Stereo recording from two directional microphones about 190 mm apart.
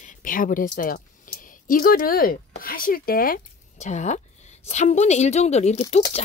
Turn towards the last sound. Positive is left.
turn(degrees=35)  # may be behind; listen again after turning